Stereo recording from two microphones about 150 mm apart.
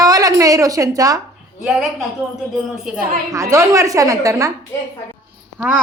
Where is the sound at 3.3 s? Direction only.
20° right (ahead or behind).